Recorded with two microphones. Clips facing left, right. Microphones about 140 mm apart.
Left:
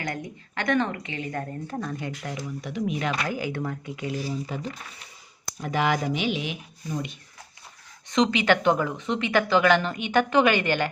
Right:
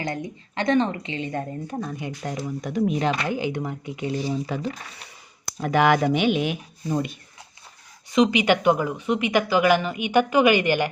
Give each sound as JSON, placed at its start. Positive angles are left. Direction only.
{"t": 0.0, "sound": "speech", "side_deg": -25}
{"t": 2.5, "sound": "speech", "side_deg": -45}
{"t": 5.5, "sound": "speech", "side_deg": -65}
{"t": 8.1, "sound": "speech", "side_deg": -10}